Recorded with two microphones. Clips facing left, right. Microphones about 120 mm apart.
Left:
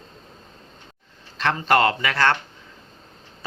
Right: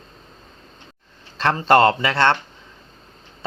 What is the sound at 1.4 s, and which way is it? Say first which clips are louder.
Speech: right 4 dB; 35° right (ahead or behind).